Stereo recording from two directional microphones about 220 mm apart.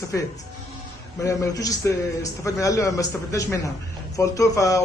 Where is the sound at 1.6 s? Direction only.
15° left (ahead or behind).